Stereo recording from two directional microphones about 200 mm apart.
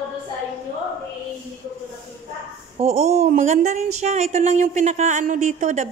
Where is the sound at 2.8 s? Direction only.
30° right (ahead or behind).